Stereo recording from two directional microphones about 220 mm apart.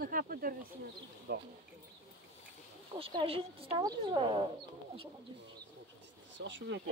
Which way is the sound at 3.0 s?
25° right (ahead or behind).